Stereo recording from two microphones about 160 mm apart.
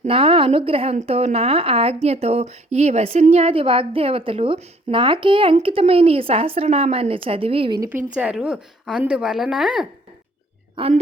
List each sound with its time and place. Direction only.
0.0 s a woman's voice: 35° right (ahead or behind)
8.1 s speech: 5° right (ahead or behind)
10.8 s speech: 40° right (ahead or behind)